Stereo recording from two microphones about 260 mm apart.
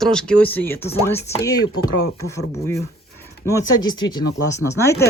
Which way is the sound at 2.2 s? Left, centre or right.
Centre.